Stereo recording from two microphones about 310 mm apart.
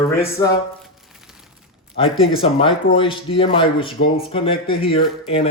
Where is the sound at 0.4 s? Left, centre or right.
Centre.